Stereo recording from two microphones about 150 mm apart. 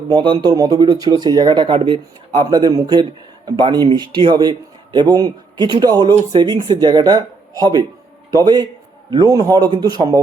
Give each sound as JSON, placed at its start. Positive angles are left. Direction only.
{"t": 0.1, "sound": "speech", "side_deg": -30}